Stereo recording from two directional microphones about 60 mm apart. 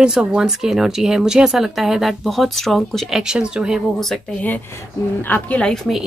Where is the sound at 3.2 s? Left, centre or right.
Centre.